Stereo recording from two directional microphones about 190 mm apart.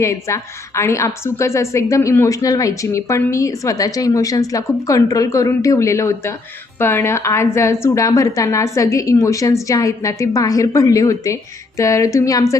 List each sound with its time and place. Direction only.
0.0 s a woman's voice: 15° left (ahead or behind)